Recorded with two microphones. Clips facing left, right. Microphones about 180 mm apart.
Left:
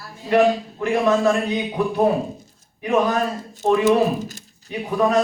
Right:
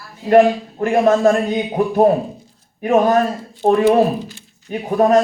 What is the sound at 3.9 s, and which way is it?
Speech, 45° left (ahead or behind).